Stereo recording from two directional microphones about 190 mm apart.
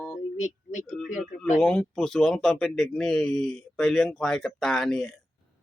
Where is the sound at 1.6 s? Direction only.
5° left (ahead or behind).